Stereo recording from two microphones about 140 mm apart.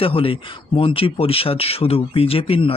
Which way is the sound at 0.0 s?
40° left (ahead or behind).